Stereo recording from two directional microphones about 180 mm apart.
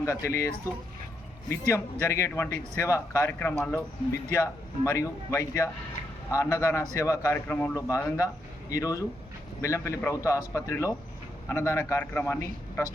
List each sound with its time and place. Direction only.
0.0 s speech: 15° left (ahead or behind)